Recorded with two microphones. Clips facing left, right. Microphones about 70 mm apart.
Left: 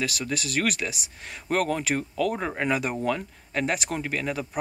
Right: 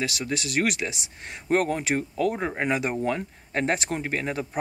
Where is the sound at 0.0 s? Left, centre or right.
Right.